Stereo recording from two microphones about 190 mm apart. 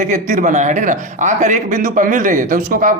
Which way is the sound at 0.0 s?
40° right (ahead or behind).